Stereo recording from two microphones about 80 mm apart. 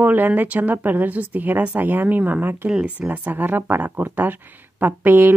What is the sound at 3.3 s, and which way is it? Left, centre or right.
Speech, right.